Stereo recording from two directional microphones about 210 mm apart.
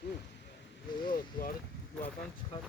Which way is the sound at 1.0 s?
40° left (ahead or behind).